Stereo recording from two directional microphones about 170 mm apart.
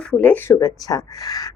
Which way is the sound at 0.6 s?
20° left (ahead or behind).